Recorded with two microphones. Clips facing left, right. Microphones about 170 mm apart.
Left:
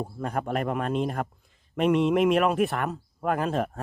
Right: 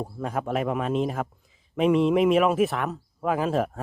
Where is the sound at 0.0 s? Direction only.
Centre (ahead or behind).